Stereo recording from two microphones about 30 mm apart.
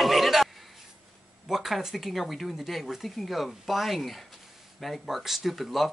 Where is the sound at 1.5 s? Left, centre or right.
Centre.